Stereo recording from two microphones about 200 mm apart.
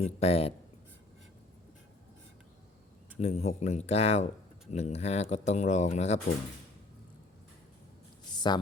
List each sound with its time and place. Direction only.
0.0 s speech: 30° left (ahead or behind)
3.2 s speech: 30° left (ahead or behind)
8.3 s a sound: 20° left (ahead or behind)